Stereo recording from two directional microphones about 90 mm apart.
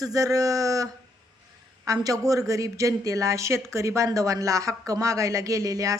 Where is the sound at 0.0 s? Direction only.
40° right (ahead or behind).